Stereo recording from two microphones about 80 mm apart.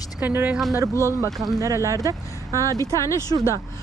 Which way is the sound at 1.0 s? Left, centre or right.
Right.